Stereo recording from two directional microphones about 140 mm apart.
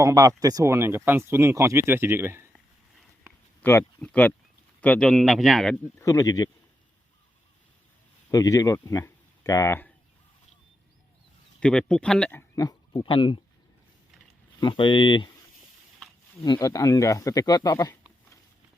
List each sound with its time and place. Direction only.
0.0 s speech: 25° right (ahead or behind)
3.6 s a man's voice: 15° left (ahead or behind)
6.0 s speech: 25° left (ahead or behind)
8.3 s speech: 25° left (ahead or behind)
11.6 s speech: 5° left (ahead or behind)
12.5 s speech: 30° left (ahead or behind)
14.6 s speech: 35° left (ahead or behind)
16.4 s speech: 25° left (ahead or behind)